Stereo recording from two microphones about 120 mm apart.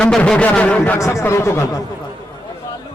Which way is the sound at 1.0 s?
25° left (ahead or behind).